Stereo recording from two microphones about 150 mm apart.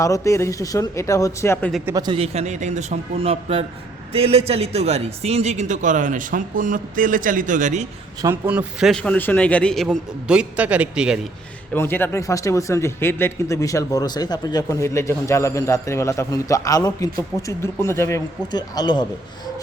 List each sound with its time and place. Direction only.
0.0 s speech: 20° left (ahead or behind)
2.0 s a man's voice: 35° right (ahead or behind); by 7.9 s 55° right (ahead or behind)
8.4 s speech: 10° right (ahead or behind)
8.9 s a man's voice: 10° left (ahead or behind)
11.7 s speech: 15° left (ahead or behind)